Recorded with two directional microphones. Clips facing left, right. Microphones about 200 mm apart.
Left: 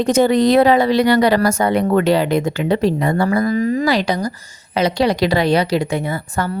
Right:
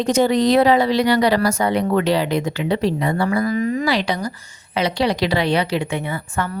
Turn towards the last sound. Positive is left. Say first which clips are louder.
# left 3 dB
turn(degrees=40)  # may be behind; listen again after turning